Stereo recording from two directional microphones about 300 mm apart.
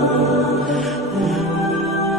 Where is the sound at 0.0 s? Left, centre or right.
Centre.